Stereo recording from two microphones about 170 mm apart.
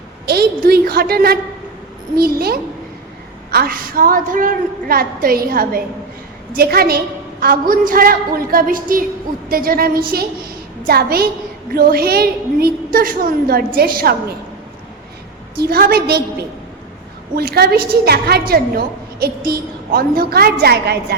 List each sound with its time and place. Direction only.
0.3 s a woman's voice: 65° right (ahead or behind)
15.5 s a woman's voice: 65° right (ahead or behind)